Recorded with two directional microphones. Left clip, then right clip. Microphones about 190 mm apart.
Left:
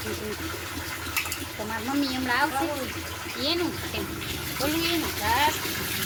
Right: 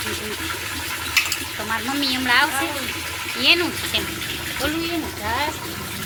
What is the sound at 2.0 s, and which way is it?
Speech, 5° left (ahead or behind).